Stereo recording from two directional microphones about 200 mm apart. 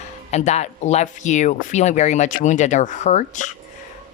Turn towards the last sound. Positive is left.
turn(degrees=35)  # may be behind; listen again after turning